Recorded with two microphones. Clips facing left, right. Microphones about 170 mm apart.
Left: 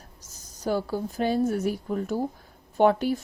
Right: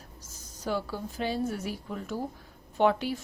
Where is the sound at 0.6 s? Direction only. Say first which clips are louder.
Left 5 dB; 45° left (ahead or behind).